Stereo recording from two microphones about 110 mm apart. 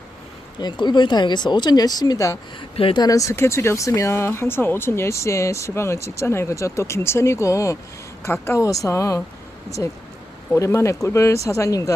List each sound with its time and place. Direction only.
0.6 s speech: 45° left (ahead or behind)
2.6 s speech: 55° left (ahead or behind)
3.0 s speech: 30° left (ahead or behind)